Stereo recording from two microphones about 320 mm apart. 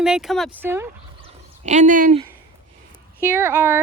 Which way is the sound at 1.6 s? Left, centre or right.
Right.